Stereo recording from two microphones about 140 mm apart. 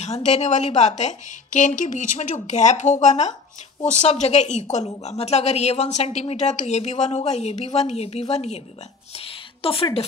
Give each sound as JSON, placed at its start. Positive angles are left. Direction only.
{"t": 0.0, "sound": "a woman's voice", "side_deg": 55}